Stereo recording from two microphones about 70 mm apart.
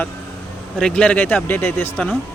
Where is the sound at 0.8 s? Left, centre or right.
Centre.